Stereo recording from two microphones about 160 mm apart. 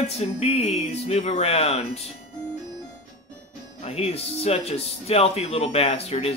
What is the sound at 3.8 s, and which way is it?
Speech, 40° left (ahead or behind).